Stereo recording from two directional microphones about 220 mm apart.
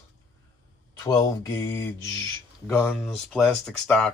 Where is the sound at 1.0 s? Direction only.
10° left (ahead or behind).